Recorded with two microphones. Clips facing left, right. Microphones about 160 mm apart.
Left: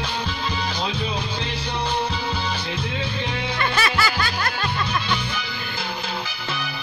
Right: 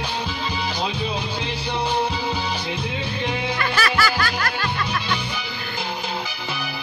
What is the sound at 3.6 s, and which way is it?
Music, 25° left (ahead or behind).